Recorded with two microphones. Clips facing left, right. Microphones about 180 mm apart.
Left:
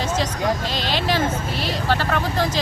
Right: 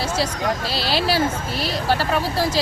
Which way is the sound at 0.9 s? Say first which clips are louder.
Right 2 dB; 10° right (ahead or behind).